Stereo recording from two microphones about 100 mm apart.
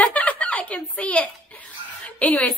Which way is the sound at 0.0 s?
15° left (ahead or behind).